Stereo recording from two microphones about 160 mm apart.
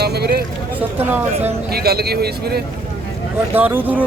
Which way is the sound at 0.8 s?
10° right (ahead or behind).